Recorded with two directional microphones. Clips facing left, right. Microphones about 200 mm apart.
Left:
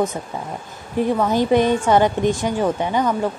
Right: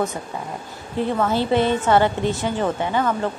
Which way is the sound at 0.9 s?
15° left (ahead or behind).